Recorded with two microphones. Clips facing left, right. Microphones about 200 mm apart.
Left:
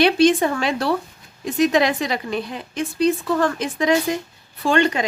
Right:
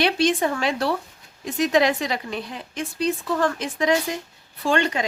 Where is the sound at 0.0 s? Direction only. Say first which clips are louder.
Left 5 dB; 60° left (ahead or behind).